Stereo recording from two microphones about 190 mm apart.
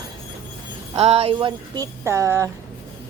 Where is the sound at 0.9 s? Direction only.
30° right (ahead or behind).